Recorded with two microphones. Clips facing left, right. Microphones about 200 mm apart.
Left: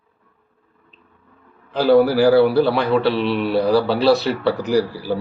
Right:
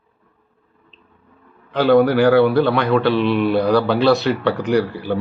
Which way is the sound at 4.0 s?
35° left (ahead or behind).